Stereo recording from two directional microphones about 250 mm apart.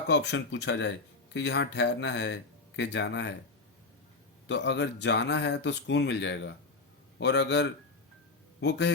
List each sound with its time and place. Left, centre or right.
0.1 s speech: left
4.4 s speech: left